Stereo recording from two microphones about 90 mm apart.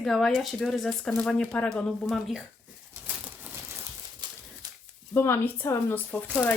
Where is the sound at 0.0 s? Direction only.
5° left (ahead or behind).